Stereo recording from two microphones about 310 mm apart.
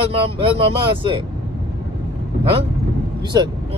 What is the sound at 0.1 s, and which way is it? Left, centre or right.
Speech, centre.